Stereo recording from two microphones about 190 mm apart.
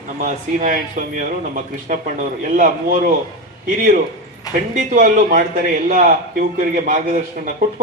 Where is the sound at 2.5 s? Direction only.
45° right (ahead or behind).